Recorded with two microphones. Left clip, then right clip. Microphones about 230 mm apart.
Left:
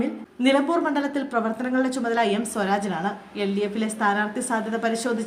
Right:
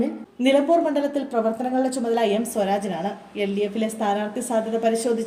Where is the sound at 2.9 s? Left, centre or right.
Left.